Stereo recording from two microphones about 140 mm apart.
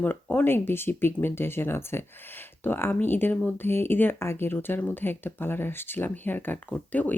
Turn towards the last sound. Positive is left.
turn(degrees=10)  # may be behind; listen again after turning